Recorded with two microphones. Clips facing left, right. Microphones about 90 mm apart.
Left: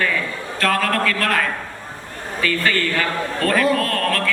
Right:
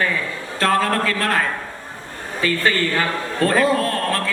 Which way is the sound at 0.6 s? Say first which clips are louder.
Right 1 dB; 25° right (ahead or behind).